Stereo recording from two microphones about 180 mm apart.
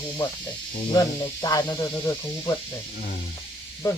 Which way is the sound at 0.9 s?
25° left (ahead or behind).